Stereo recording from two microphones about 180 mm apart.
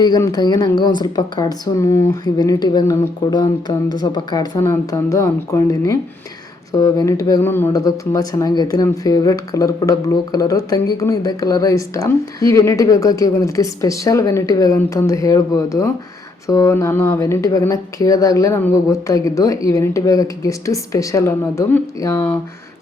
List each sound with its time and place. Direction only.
0.0 s speech: 20° left (ahead or behind)